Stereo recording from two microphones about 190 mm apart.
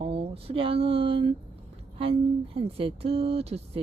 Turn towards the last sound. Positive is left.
turn(degrees=-30)  # may be behind; listen again after turning